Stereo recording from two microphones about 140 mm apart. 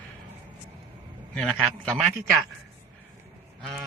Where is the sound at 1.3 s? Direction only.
5° left (ahead or behind).